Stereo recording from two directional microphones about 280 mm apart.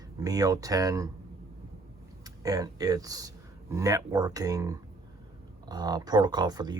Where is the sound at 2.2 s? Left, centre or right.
Centre.